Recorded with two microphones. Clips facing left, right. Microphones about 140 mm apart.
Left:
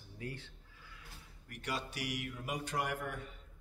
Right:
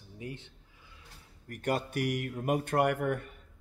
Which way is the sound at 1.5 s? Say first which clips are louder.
Right 9 dB; 50° right (ahead or behind).